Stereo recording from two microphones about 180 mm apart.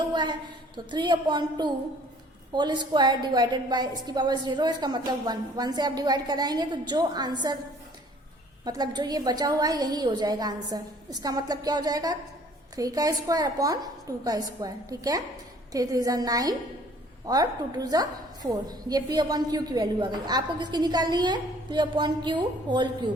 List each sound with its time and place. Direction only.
0.0 s a woman's voice: 25° right (ahead or behind)
8.6 s a woman's voice: 20° right (ahead or behind)